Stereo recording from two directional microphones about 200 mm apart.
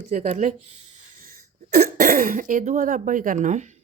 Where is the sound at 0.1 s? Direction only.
35° right (ahead or behind).